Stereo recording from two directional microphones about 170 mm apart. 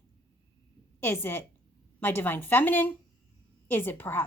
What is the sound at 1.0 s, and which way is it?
A woman's voice, 15° left (ahead or behind).